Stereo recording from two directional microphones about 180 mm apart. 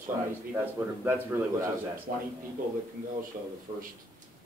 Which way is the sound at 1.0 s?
15° right (ahead or behind).